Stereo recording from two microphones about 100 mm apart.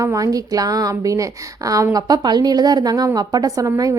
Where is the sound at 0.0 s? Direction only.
35° right (ahead or behind).